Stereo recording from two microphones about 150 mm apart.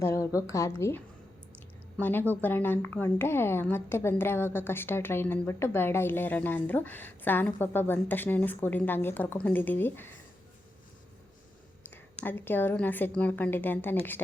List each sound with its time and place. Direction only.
0.0 s a sound: 20° left (ahead or behind)
0.3 s a woman's voice: 20° left (ahead or behind)
12.2 s a woman's voice: 15° left (ahead or behind)